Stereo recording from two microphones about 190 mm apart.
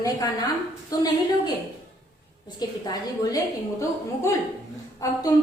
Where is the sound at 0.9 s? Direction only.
20° left (ahead or behind).